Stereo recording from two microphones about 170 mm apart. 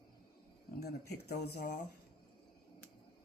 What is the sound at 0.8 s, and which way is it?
Speech, 70° left (ahead or behind).